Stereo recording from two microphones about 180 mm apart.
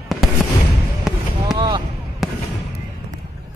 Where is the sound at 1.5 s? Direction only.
25° right (ahead or behind).